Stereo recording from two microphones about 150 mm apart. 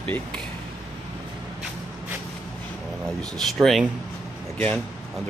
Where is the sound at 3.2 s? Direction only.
Centre (ahead or behind).